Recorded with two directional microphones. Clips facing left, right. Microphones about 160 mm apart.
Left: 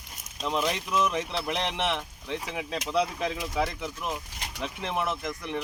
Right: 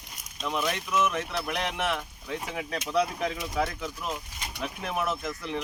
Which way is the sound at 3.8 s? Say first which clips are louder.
Left 1 dB; 15° left (ahead or behind).